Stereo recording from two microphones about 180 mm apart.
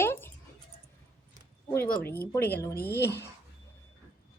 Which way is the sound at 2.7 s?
60° left (ahead or behind).